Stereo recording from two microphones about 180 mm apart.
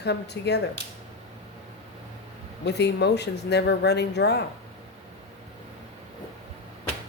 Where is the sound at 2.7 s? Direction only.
70° left (ahead or behind).